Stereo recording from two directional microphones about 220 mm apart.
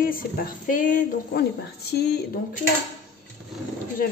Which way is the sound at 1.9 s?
50° left (ahead or behind).